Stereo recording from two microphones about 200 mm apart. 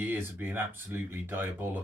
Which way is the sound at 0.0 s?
10° right (ahead or behind).